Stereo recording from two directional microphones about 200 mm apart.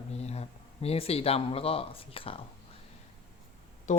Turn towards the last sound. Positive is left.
turn(degrees=35)  # may be behind; listen again after turning